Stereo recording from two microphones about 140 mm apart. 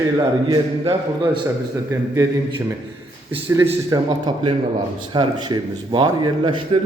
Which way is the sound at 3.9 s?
30° right (ahead or behind).